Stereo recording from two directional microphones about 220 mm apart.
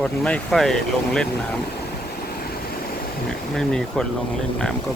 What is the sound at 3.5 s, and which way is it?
Speech, 5° left (ahead or behind).